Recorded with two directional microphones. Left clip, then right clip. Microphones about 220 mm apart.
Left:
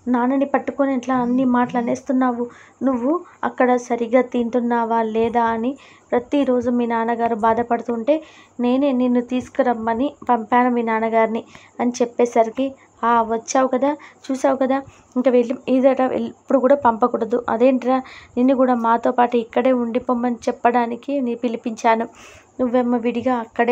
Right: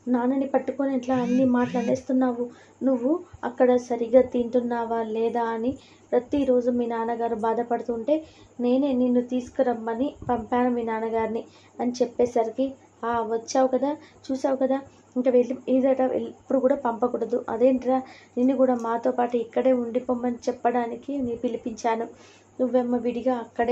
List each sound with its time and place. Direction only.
0.1 s a woman's voice: 45° left (ahead or behind)